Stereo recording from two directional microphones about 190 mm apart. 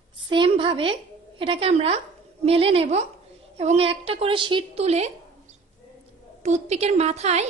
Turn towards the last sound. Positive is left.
turn(degrees=-35)  # may be behind; listen again after turning